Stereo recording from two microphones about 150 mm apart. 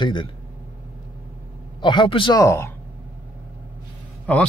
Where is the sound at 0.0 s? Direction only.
30° left (ahead or behind).